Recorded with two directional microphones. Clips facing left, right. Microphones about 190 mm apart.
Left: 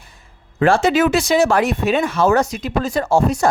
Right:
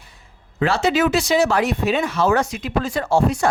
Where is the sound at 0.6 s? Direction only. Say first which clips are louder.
Left 4 dB; 50° left (ahead or behind).